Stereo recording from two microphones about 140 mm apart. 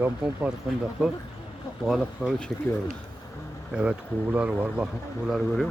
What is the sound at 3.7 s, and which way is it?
Speech, 5° right (ahead or behind).